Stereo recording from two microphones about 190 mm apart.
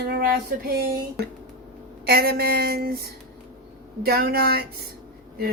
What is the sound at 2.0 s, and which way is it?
A woman's voice, 55° right (ahead or behind).